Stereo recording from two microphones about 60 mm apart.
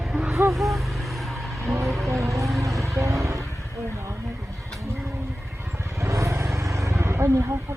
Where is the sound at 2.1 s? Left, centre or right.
Right.